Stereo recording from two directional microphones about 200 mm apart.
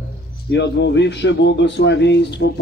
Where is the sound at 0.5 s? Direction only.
60° left (ahead or behind).